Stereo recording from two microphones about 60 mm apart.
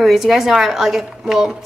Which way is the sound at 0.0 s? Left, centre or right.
Centre.